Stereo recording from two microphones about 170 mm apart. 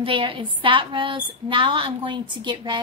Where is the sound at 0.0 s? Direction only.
30° right (ahead or behind).